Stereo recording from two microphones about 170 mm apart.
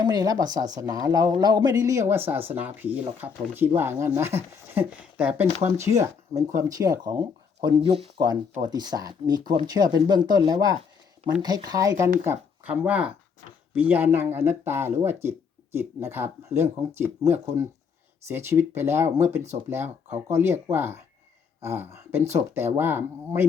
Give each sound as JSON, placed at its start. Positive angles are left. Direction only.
{"t": 0.0, "sound": "speech", "side_deg": -20}